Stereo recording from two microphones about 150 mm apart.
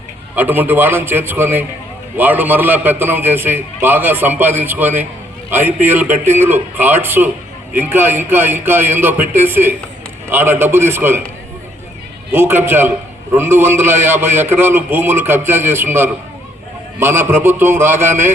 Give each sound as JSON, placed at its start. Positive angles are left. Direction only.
{"t": 0.3, "sound": "a man's voice", "side_deg": -10}
{"t": 12.3, "sound": "a man's voice", "side_deg": -15}